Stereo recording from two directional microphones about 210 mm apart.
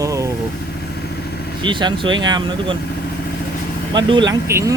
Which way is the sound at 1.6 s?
20° right (ahead or behind).